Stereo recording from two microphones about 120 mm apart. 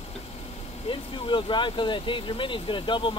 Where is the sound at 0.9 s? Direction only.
45° left (ahead or behind).